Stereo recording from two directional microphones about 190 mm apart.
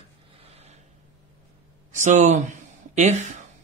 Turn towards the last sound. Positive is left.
turn(degrees=-40)  # may be behind; listen again after turning